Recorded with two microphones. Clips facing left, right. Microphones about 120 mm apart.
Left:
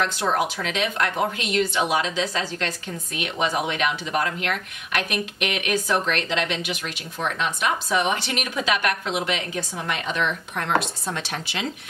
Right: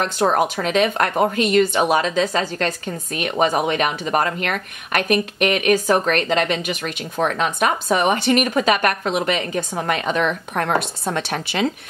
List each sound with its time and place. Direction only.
0.0 s speech: 45° right (ahead or behind)